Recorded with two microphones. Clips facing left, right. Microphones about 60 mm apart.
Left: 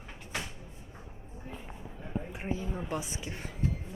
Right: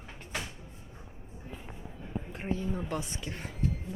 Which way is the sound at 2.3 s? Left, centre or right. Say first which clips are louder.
Right 5 dB; centre.